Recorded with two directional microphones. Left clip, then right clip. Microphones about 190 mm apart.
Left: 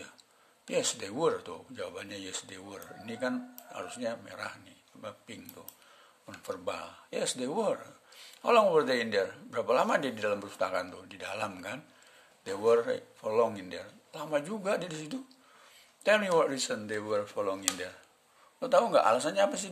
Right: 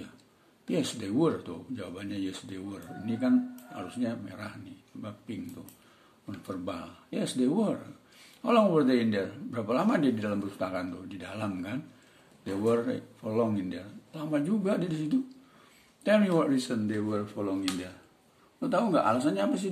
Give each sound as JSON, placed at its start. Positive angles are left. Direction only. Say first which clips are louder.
{"t": 0.7, "sound": "speech", "louder": "even", "side_deg": 35}